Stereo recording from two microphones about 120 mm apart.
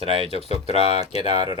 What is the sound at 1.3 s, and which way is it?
Speech, 40° right (ahead or behind).